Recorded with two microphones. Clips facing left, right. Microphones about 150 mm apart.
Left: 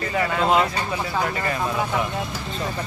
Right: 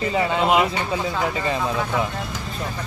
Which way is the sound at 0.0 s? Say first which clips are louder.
Right 2 dB; 20° right (ahead or behind).